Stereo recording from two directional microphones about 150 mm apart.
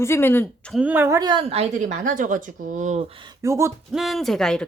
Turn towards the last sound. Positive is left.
turn(degrees=5)  # may be behind; listen again after turning